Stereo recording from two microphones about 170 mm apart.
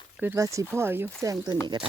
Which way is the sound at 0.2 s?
15° right (ahead or behind).